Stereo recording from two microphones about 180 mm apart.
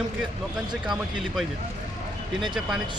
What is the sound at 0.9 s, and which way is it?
Speech, centre (ahead or behind).